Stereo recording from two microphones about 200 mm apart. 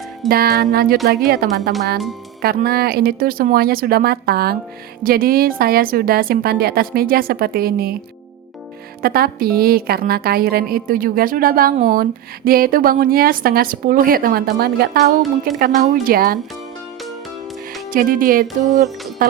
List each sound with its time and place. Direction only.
0.3 s a woman's voice: 50° right (ahead or behind)
9.0 s a woman's voice: 50° right (ahead or behind)
11.8 s speech: 35° right (ahead or behind)
12.5 s a woman's voice: 45° right (ahead or behind)
17.9 s a woman's voice: 45° right (ahead or behind)